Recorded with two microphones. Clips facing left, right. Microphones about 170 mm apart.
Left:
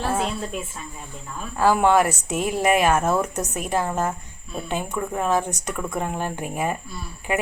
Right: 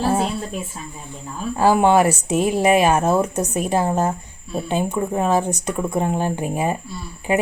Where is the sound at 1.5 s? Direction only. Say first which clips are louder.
Right 3 dB; 25° right (ahead or behind).